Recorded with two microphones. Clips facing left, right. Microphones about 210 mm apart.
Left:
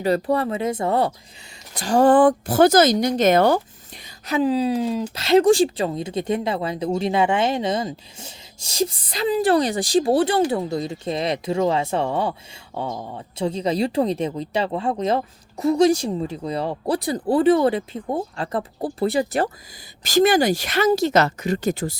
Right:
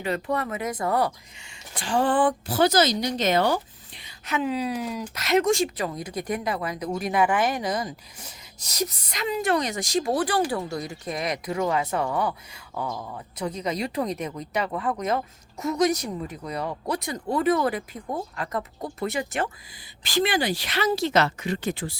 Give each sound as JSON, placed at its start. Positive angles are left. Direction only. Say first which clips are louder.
{"t": 0.0, "sound": "speech", "louder": "left 7 dB", "side_deg": 35}
{"t": 1.7, "sound": "speech", "louder": "left 8 dB", "side_deg": 40}
{"t": 4.3, "sound": "speech", "louder": "left 7 dB", "side_deg": 35}